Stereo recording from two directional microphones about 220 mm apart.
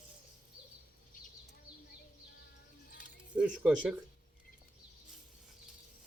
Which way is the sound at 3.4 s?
5° right (ahead or behind).